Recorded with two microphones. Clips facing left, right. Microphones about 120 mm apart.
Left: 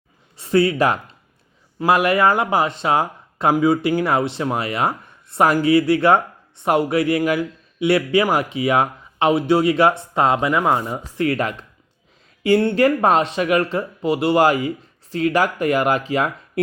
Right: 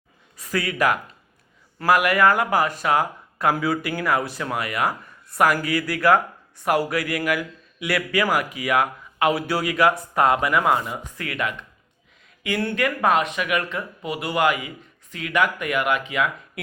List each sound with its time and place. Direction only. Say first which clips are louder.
0.3 s speech: left 8 dB; 30° left (ahead or behind)